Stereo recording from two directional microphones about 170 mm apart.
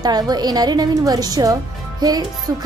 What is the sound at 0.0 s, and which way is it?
A woman's voice, 25° right (ahead or behind).